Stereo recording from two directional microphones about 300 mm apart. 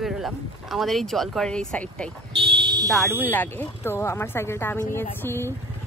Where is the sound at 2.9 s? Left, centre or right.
Centre.